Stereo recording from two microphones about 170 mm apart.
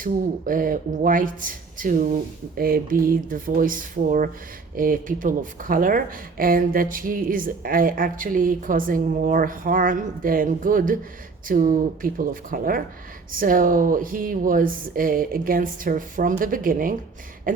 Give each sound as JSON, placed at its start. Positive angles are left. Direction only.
{"t": 0.0, "sound": "speech", "side_deg": -55}